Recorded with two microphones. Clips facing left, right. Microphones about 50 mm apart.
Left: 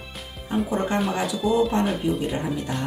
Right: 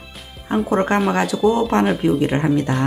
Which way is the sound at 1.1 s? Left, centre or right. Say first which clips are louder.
Right 6 dB; right.